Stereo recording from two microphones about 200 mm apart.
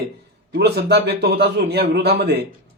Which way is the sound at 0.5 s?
55° right (ahead or behind).